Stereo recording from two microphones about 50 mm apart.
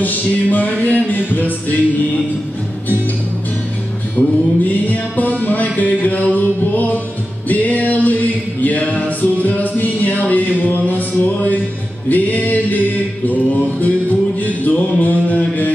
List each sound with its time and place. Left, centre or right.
0.0 s music: left
4.2 s music: left